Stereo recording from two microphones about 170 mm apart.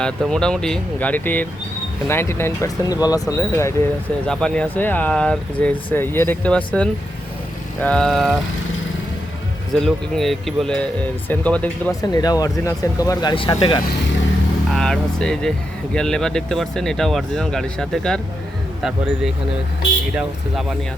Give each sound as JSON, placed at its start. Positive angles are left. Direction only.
{"t": 0.0, "sound": "speech", "side_deg": 5}
{"t": 4.3, "sound": "speech", "side_deg": 5}
{"t": 9.7, "sound": "speech", "side_deg": 0}
{"t": 11.9, "sound": "speech", "side_deg": 20}
{"t": 13.3, "sound": "speech", "side_deg": 30}
{"t": 14.7, "sound": "speech", "side_deg": 5}